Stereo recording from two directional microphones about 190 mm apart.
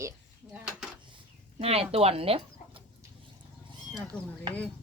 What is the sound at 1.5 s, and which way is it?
Speech, 30° right (ahead or behind).